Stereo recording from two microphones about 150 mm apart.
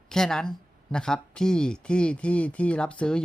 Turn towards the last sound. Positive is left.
turn(degrees=5)  # may be behind; listen again after turning